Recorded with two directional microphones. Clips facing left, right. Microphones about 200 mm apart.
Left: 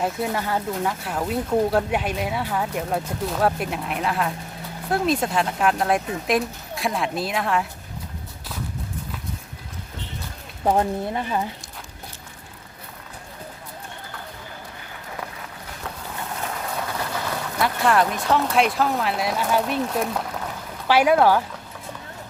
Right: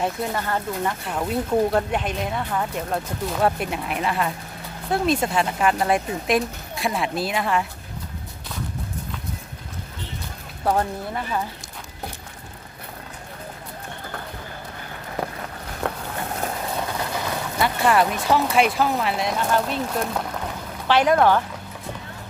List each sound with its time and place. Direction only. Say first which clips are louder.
0.0 s speech: left 1 dB; 10° left (ahead or behind)
10.6 s speech: left 2 dB; 20° left (ahead or behind)
15.9 s boat: right 8 dB; 65° right (ahead or behind)
17.6 s speech: right 1 dB; centre (ahead or behind)
20.8 s speech: left 1 dB; 10° left (ahead or behind)